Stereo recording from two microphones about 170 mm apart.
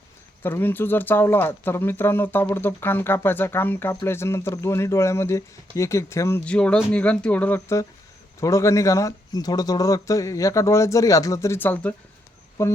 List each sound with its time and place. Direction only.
0.4 s speech: 10° left (ahead or behind)